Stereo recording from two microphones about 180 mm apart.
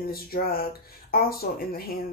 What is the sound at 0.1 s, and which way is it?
Speech, 55° left (ahead or behind).